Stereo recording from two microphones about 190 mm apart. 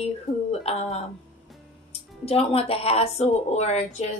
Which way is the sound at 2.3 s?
30° left (ahead or behind).